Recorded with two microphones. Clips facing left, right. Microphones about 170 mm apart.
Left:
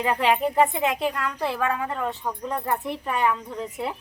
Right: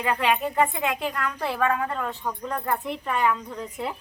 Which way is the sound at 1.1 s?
10° left (ahead or behind).